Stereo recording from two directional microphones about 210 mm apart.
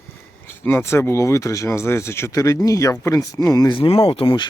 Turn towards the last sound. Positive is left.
turn(degrees=20)  # may be behind; listen again after turning